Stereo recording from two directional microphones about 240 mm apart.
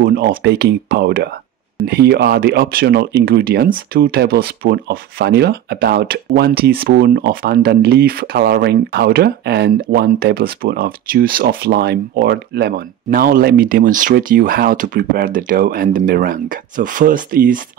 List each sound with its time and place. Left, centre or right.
0.0 s speech: right